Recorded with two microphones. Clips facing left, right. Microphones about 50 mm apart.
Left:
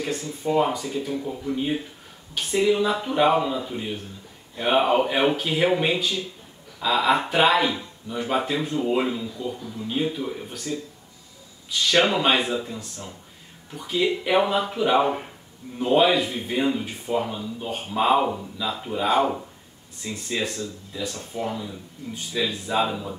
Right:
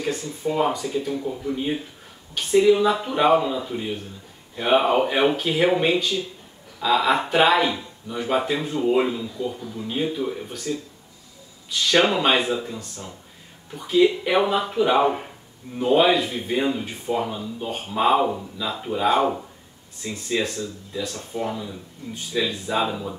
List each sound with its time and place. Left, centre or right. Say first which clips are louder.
0.0 s speech: right 2 dB; centre